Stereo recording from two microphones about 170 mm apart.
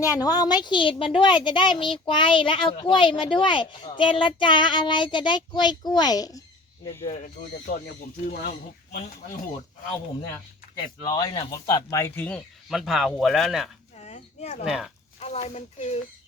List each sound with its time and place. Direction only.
0.1 s speech: 25° left (ahead or behind)
7.0 s speech: 50° left (ahead or behind)
11.1 s speech: 25° left (ahead or behind)
12.6 s speech: centre (ahead or behind)
14.0 s a sound: 40° left (ahead or behind)
14.6 s speech: centre (ahead or behind)
15.2 s speech: 40° left (ahead or behind)